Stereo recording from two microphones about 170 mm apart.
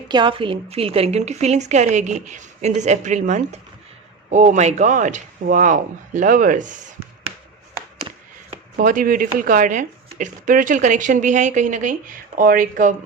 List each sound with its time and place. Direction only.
0.1 s a woman's voice: 30° right (ahead or behind); by 6.7 s 50° right (ahead or behind)
8.7 s speech: 50° right (ahead or behind)